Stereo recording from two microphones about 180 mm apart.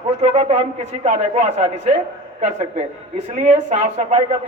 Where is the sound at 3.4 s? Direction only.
45° right (ahead or behind).